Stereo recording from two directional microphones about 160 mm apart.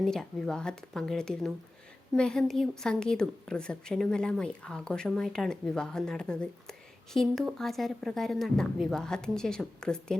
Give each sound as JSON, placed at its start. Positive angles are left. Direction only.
{"t": 0.0, "sound": "a woman's voice", "side_deg": 5}